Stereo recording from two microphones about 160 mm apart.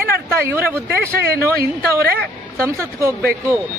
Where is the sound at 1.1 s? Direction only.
70° right (ahead or behind).